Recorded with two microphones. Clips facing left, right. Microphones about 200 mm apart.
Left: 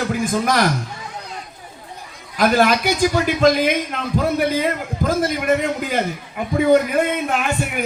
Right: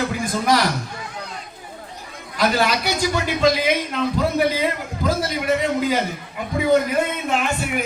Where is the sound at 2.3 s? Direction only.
50° left (ahead or behind).